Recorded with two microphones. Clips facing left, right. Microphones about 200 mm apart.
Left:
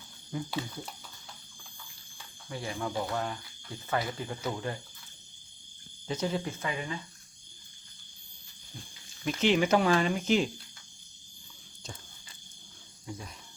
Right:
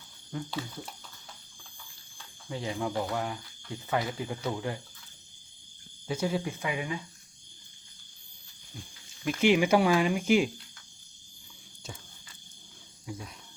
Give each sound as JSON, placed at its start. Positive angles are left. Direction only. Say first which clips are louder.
{"t": 0.3, "sound": "speech", "louder": "left 1 dB", "side_deg": 5}
{"t": 2.5, "sound": "speech", "louder": "right 3 dB", "side_deg": -20}
{"t": 4.4, "sound": "speech", "louder": "even", "side_deg": 0}
{"t": 6.1, "sound": "speech", "louder": "right 1 dB", "side_deg": -10}
{"t": 9.2, "sound": "speech", "louder": "right 2 dB", "side_deg": -10}
{"t": 13.1, "sound": "speech", "louder": "right 1 dB", "side_deg": 0}